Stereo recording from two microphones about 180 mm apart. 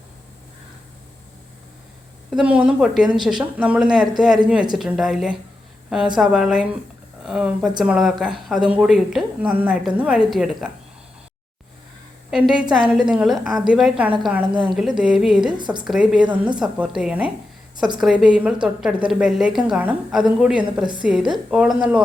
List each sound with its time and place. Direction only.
2.3 s a woman's voice: 5° right (ahead or behind)
12.3 s a woman's voice: 5° right (ahead or behind)
15.5 s a woman's voice: 25° right (ahead or behind)
15.8 s a woman's voice: 5° right (ahead or behind)